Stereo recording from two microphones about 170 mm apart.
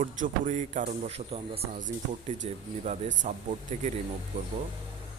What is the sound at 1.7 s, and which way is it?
Speech, 45° right (ahead or behind).